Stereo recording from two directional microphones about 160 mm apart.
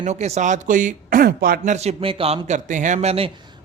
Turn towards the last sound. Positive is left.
turn(degrees=-40)  # may be behind; listen again after turning